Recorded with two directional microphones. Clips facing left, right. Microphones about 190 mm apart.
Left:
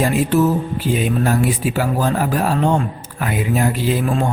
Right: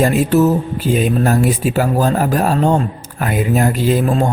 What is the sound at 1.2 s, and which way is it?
Speech, 45° right (ahead or behind).